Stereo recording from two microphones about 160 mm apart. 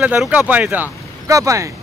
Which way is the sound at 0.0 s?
10° right (ahead or behind).